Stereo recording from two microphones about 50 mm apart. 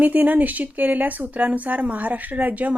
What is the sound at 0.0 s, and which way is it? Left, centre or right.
Speech, right.